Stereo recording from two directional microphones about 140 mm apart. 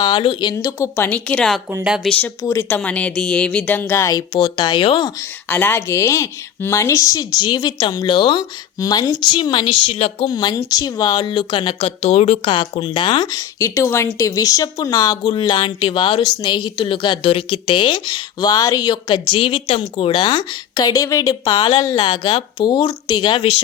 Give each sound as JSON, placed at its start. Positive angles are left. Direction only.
{"t": 0.0, "sound": "speech", "side_deg": 35}
{"t": 0.5, "sound": "speech", "side_deg": 20}
{"t": 4.4, "sound": "speech", "side_deg": 35}
{"t": 5.5, "sound": "speech", "side_deg": 15}
{"t": 10.2, "sound": "speech", "side_deg": 30}